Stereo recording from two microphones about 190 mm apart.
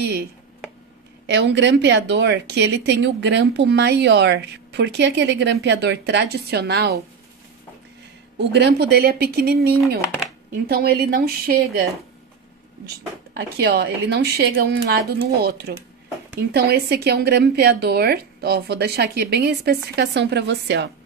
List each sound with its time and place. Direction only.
1.2 s speech: 65° right (ahead or behind)
8.4 s speech: 65° right (ahead or behind)
12.8 s speech: 60° right (ahead or behind)